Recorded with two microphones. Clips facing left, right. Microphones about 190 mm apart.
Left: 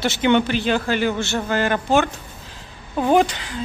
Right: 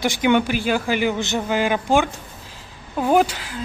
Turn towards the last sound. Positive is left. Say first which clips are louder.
# left 1 dB
turn(degrees=-5)  # may be behind; listen again after turning